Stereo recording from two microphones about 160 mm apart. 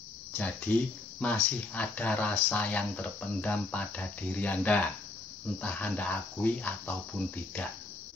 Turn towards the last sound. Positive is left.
turn(degrees=10)  # may be behind; listen again after turning